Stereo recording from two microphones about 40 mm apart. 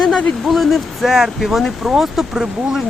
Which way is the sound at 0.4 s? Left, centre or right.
Centre.